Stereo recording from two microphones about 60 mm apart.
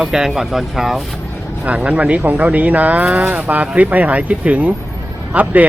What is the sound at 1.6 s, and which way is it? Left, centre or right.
Speech, right.